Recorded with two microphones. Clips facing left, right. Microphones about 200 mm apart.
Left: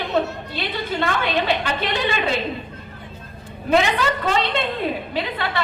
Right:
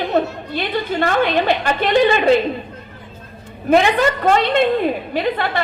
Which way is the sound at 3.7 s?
50° right (ahead or behind).